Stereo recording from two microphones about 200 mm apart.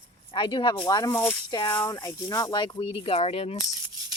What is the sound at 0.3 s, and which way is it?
Speech, 25° left (ahead or behind).